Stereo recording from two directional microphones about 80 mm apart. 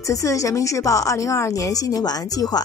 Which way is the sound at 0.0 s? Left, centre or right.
Left.